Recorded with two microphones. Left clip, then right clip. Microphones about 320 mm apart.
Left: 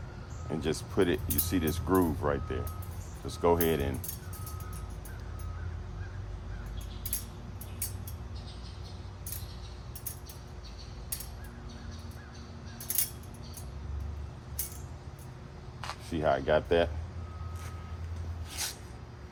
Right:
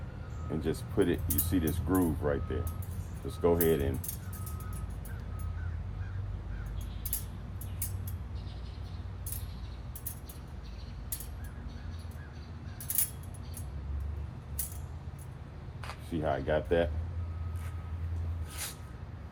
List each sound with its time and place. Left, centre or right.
0.6 s speech: centre
15.8 s speech: left
18.6 s a sound: centre